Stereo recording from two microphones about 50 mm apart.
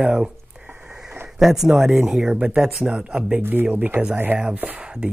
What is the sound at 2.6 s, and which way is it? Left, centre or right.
Speech, centre.